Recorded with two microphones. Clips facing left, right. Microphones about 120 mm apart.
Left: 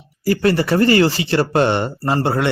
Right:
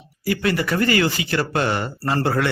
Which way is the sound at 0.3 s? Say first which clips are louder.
Left 5 dB; 35° left (ahead or behind).